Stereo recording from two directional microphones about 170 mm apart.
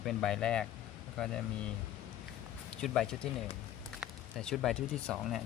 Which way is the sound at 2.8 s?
5° left (ahead or behind).